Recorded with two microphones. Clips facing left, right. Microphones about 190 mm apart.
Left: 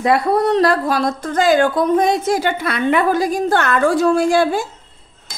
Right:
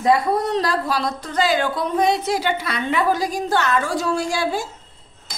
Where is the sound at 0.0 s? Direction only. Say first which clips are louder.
Left 3 dB; 65° left (ahead or behind).